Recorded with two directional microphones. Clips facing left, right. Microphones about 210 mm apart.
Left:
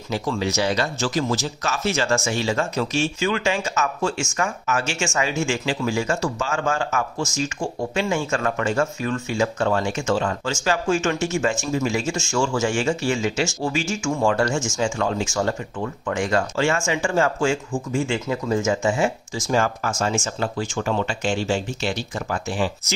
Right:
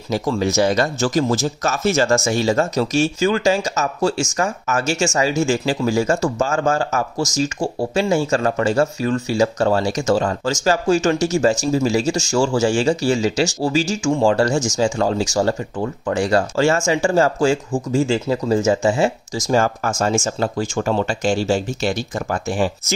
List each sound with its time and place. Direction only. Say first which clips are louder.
0.1 s speech: right 5 dB; 45° right (ahead or behind)